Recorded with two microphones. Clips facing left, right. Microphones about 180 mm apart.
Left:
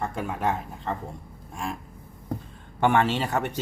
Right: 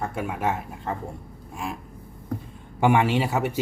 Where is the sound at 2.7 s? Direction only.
10° right (ahead or behind).